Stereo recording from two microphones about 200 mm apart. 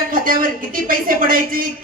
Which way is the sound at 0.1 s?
45° right (ahead or behind).